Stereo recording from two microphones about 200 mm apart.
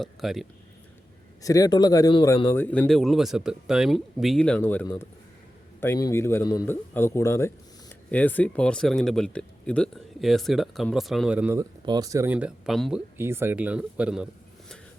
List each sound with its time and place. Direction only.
0.0 s a man's voice: centre (ahead or behind)
1.4 s a man's voice: 15° left (ahead or behind); by 13.0 s centre (ahead or behind)
13.1 s speech: 10° right (ahead or behind)